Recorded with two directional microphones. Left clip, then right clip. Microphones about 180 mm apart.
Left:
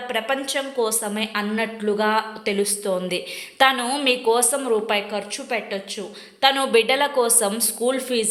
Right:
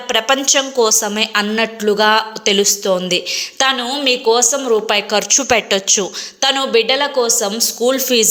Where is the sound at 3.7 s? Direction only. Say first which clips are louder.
Right 4 dB; 5° right (ahead or behind).